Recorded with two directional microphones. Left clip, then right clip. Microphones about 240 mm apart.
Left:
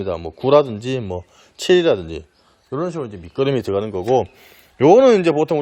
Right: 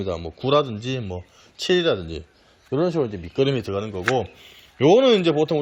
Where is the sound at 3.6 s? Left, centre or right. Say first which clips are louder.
Left 6 dB; left.